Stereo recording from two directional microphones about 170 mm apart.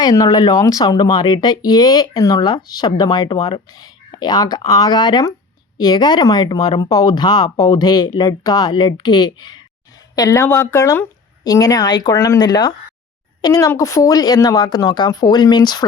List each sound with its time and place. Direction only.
0.0 s speech: 25° left (ahead or behind)